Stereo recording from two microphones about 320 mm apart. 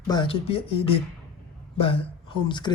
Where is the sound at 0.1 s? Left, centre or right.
Centre.